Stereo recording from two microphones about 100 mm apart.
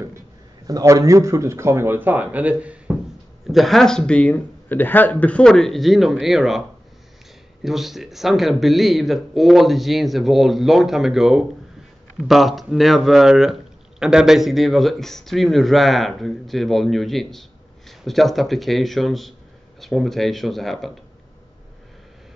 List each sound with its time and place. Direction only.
0.7 s speech: 35° right (ahead or behind); by 3.0 s 15° right (ahead or behind)
3.4 s speech: centre (ahead or behind)
7.6 s speech: 5° right (ahead or behind)